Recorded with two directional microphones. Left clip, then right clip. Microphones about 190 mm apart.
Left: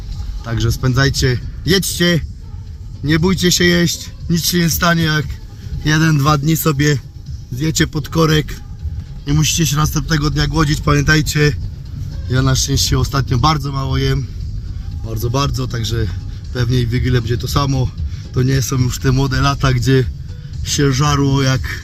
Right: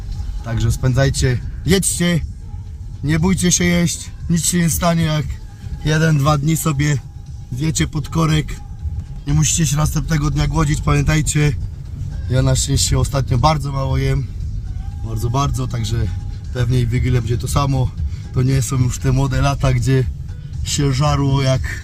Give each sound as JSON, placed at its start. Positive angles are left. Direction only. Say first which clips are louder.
{"t": 0.4, "sound": "speech", "louder": "left 3 dB", "side_deg": -10}
{"t": 7.9, "sound": "speech", "louder": "left 5 dB", "side_deg": -5}